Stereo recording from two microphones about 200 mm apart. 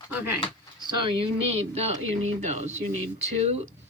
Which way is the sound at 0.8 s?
25° right (ahead or behind).